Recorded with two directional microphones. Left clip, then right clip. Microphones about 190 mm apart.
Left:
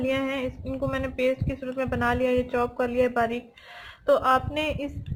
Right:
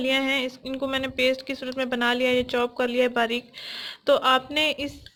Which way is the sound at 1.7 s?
55° right (ahead or behind).